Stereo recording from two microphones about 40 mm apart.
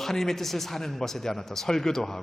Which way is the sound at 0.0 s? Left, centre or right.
Centre.